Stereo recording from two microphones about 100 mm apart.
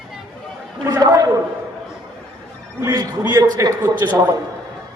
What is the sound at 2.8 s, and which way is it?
A man's voice, 35° right (ahead or behind).